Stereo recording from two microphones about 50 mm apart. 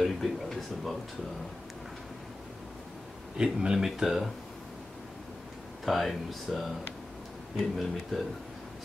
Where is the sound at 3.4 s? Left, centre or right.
Centre.